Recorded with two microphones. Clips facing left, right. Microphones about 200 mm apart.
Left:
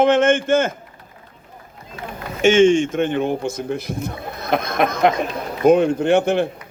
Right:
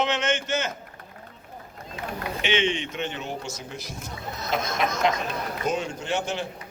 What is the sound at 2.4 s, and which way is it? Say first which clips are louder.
Speech: left 14 dB; 45° left (ahead or behind).